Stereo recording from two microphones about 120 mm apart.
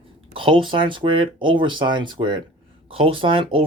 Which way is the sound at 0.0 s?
50° right (ahead or behind).